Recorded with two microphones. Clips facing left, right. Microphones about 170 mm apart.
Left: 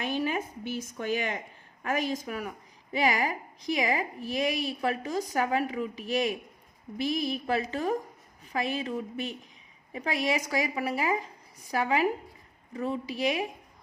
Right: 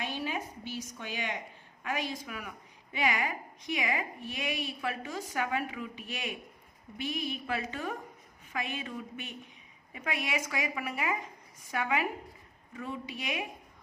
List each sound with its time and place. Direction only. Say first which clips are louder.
0.3 s a woman's voice: left 5 dB; 50° left (ahead or behind); by 13.5 s 35° left (ahead or behind)